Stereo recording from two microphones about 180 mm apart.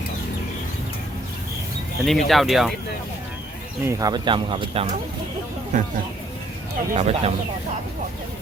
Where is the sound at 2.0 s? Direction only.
Centre (ahead or behind).